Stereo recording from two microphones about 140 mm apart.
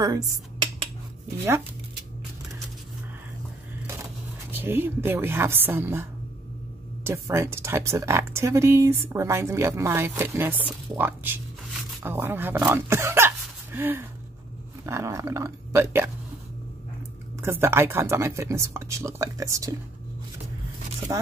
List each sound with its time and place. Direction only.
3.8 s speech: 15° right (ahead or behind)
7.1 s speech: 20° right (ahead or behind)
17.4 s speech: 20° right (ahead or behind)
21.1 s speech: 20° right (ahead or behind)